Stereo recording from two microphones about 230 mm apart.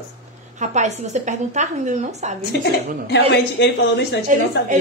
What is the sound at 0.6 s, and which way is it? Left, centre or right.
A woman's voice, right.